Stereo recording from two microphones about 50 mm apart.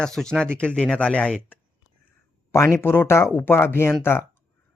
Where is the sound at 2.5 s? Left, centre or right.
Left.